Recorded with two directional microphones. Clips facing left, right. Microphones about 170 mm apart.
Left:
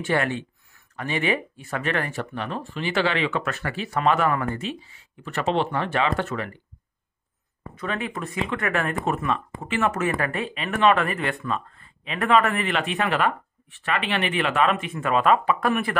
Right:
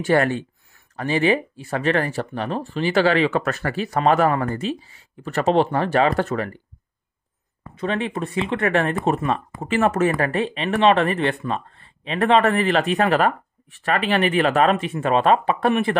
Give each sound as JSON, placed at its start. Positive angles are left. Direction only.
{"t": 0.0, "sound": "speech", "side_deg": -40}
{"t": 7.7, "sound": "speech", "side_deg": -25}